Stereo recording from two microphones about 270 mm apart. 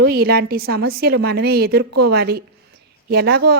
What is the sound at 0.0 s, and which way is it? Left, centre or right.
A woman's voice, right.